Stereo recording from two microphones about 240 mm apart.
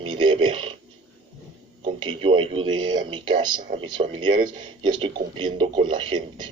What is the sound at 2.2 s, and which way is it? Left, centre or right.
A man's voice, right.